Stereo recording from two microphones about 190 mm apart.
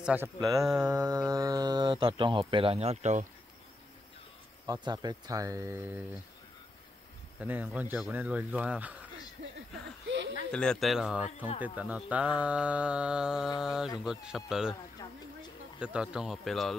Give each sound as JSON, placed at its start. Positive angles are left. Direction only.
{"t": 0.0, "sound": "speech", "side_deg": -10}
{"t": 0.4, "sound": "speech", "side_deg": -20}
{"t": 4.8, "sound": "speech", "side_deg": -20}
{"t": 7.3, "sound": "speech", "side_deg": -10}
{"t": 10.0, "sound": "a sound", "side_deg": -70}
{"t": 10.5, "sound": "mantra", "side_deg": 5}
{"t": 11.2, "sound": "speech", "side_deg": 30}
{"t": 11.6, "sound": "mantra", "side_deg": -10}
{"t": 15.8, "sound": "mantra", "side_deg": -5}